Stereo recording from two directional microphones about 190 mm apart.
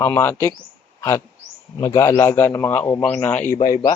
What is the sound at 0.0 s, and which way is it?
Speech, 15° left (ahead or behind).